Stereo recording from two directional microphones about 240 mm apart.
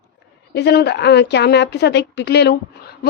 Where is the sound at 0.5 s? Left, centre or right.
Left.